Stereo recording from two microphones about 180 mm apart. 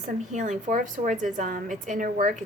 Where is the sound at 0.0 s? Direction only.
40° right (ahead or behind).